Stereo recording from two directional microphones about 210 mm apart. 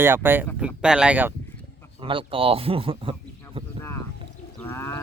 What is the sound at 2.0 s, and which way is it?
Speech, 25° right (ahead or behind).